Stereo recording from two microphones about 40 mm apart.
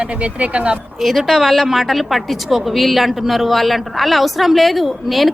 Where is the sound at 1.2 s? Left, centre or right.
Centre.